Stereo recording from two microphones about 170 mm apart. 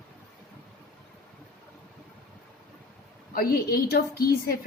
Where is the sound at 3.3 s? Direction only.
65° left (ahead or behind).